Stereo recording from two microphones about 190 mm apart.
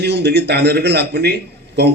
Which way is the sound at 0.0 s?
60° right (ahead or behind).